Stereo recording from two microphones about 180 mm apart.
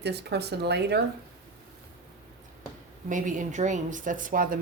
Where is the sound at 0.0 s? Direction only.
65° right (ahead or behind).